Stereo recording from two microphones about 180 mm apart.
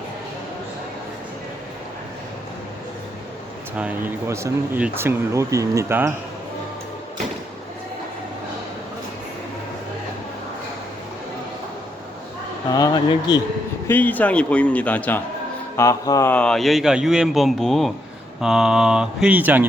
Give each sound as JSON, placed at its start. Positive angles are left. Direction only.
{"t": 3.8, "sound": "speech", "side_deg": -10}
{"t": 12.7, "sound": "speech", "side_deg": 20}
{"t": 13.8, "sound": "a man's voice", "side_deg": 10}
{"t": 16.3, "sound": "speech", "side_deg": 5}